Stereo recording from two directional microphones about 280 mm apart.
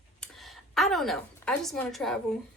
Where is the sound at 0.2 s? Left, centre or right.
Centre.